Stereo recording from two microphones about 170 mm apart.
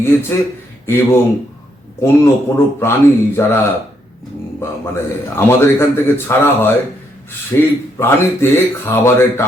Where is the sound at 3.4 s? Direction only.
15° left (ahead or behind).